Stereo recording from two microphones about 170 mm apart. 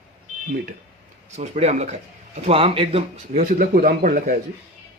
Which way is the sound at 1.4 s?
40° right (ahead or behind).